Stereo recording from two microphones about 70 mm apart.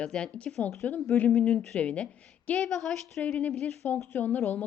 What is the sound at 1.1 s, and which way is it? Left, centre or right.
A woman's voice, left.